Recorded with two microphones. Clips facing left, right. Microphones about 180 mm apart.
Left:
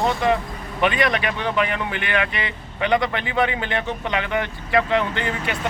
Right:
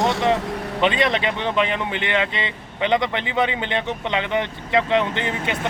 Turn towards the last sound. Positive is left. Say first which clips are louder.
# right 1 dB
turn(degrees=-20)  # may be behind; listen again after turning